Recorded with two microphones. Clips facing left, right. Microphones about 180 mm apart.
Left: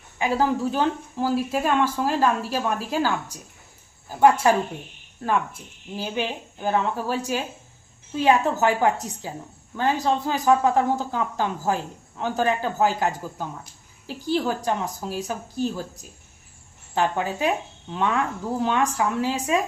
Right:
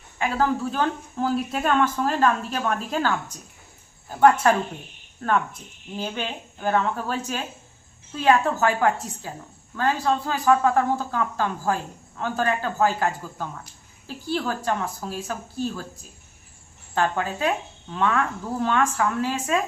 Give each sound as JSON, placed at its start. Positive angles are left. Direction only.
{"t": 0.2, "sound": "a woman's voice", "side_deg": 15}
{"t": 16.9, "sound": "a woman's voice", "side_deg": 15}